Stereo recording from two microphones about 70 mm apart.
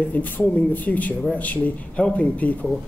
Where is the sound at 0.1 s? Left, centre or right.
Left.